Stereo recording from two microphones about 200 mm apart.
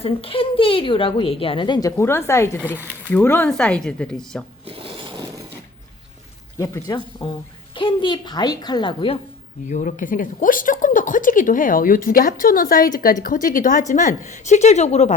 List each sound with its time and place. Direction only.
0.0 s a woman's voice: 25° left (ahead or behind); by 4.4 s 5° left (ahead or behind)
4.6 s filing: 25° right (ahead or behind)
6.6 s a woman's voice: 20° left (ahead or behind)
9.6 s a woman's voice: 40° left (ahead or behind)